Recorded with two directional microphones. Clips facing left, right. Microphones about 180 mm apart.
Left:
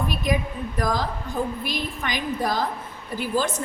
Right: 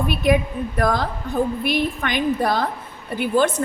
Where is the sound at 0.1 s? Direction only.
60° right (ahead or behind).